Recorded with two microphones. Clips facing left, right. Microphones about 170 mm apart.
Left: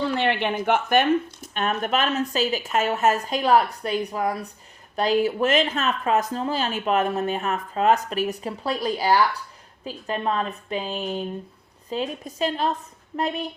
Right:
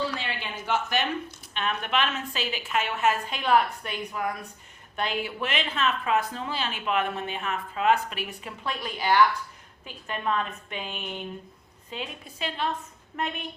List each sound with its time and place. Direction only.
0.1 s speech: 65° left (ahead or behind); by 13.5 s 35° left (ahead or behind)